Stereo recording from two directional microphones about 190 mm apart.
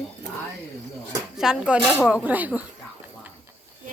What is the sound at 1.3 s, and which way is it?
Speech, 5° right (ahead or behind).